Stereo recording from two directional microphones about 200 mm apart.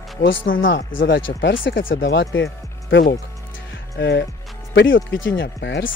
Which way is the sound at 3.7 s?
60° left (ahead or behind).